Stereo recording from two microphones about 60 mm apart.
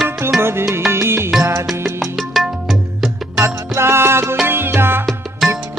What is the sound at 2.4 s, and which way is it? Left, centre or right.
Music, centre.